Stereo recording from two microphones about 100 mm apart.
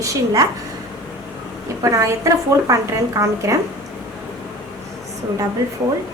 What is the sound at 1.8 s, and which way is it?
Speech, 35° right (ahead or behind).